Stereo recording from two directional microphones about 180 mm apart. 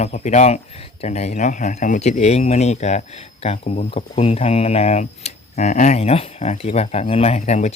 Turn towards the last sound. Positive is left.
turn(degrees=40)  # may be behind; listen again after turning